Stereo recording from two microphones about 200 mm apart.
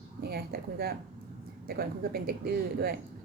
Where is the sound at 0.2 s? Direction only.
50° right (ahead or behind).